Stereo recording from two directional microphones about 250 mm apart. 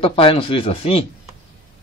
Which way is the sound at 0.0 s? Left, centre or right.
Left.